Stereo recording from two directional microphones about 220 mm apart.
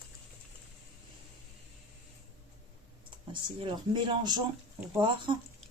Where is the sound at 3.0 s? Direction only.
20° right (ahead or behind).